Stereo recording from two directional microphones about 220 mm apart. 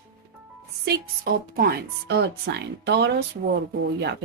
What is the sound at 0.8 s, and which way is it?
Speech, 45° right (ahead or behind).